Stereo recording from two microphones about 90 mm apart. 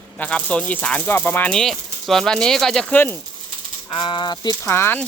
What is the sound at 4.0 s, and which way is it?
Speech, 65° left (ahead or behind).